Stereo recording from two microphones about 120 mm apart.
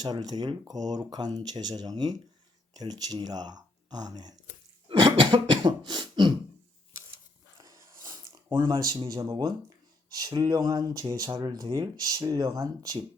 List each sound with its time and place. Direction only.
0.0 s speech: 35° right (ahead or behind)
4.9 s throat clearing: 40° right (ahead or behind)
7.6 s a sound: 35° right (ahead or behind)
10.2 s speech: 30° right (ahead or behind)